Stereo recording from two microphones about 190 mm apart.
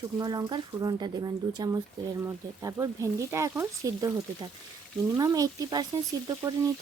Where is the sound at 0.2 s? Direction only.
20° right (ahead or behind).